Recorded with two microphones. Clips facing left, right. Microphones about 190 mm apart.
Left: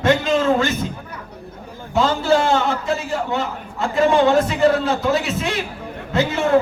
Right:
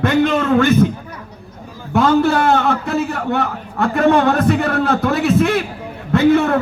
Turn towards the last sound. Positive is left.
turn(degrees=-60)  # may be behind; listen again after turning